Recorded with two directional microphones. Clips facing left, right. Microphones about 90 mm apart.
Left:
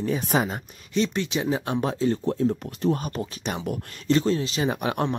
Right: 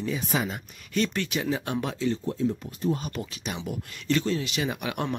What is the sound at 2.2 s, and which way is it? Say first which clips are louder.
Speech: left 4 dB; 60° left (ahead or behind).